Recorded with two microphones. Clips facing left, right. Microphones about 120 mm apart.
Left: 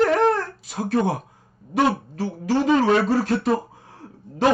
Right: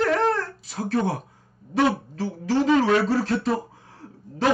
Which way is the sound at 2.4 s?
15° left (ahead or behind).